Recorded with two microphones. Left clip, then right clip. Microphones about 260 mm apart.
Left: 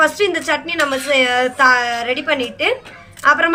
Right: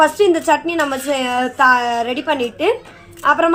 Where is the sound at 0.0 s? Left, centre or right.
Right.